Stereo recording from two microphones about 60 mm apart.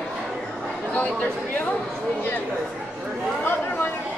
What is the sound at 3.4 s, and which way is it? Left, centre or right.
Chatter, left.